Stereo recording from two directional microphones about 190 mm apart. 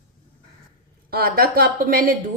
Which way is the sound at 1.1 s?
55° right (ahead or behind).